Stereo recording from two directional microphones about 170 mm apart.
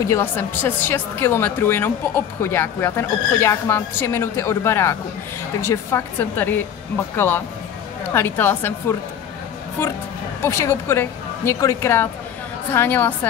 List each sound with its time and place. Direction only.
0.1 s speech: 15° left (ahead or behind)